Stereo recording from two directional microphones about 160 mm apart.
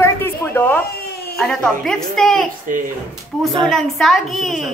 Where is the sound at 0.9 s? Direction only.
85° left.